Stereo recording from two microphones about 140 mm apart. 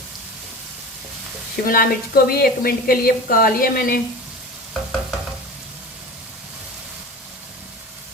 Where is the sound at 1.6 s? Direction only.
90° left.